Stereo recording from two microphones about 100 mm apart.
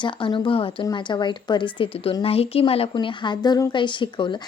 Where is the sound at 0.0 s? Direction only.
55° left (ahead or behind).